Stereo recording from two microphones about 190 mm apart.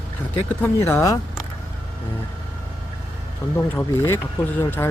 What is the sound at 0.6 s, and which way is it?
Speech, 15° left (ahead or behind).